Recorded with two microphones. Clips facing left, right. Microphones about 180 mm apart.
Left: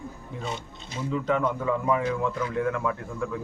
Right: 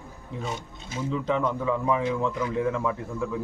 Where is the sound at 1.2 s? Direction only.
Centre (ahead or behind).